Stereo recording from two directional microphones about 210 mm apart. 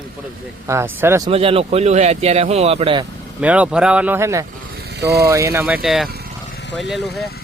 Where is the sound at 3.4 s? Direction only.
5° right (ahead or behind).